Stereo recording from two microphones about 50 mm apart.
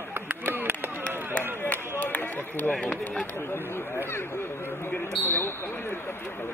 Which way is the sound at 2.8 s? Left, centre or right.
Left.